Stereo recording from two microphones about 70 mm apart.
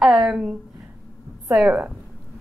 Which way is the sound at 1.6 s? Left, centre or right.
Centre.